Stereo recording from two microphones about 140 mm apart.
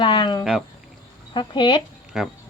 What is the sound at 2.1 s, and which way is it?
Speech, 5° right (ahead or behind).